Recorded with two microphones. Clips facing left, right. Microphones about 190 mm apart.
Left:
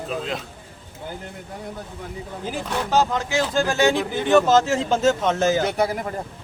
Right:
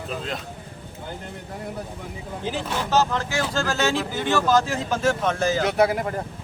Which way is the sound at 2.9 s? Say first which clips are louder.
Left 2 dB; 15° left (ahead or behind).